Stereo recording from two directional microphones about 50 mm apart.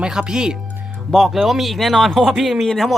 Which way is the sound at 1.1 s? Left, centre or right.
Centre.